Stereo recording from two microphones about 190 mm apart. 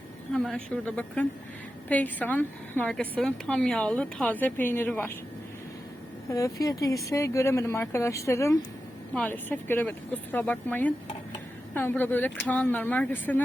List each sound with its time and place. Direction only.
0.3 s a woman's voice: 5° left (ahead or behind)
6.3 s a woman's voice: 15° left (ahead or behind)